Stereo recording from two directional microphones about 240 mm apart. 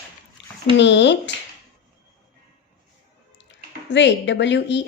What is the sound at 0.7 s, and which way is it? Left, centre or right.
Speech, left.